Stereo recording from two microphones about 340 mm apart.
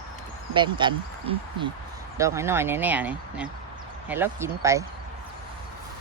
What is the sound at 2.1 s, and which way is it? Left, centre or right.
Speech, centre.